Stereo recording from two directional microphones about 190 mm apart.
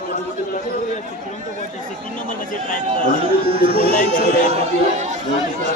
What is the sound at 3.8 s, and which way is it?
Speech, 45° left (ahead or behind).